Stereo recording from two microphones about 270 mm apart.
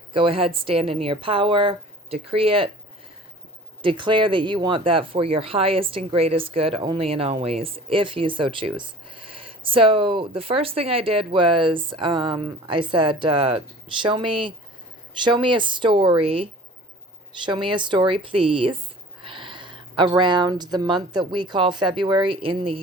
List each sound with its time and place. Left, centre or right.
0.1 s speech: centre
3.8 s speech: centre